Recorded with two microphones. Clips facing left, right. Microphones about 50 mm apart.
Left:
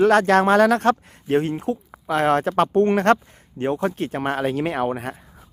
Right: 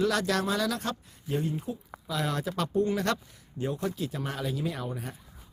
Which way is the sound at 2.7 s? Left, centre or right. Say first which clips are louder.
Left 9 dB; left.